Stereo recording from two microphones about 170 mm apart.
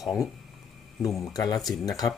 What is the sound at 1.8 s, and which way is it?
Speech, 20° left (ahead or behind).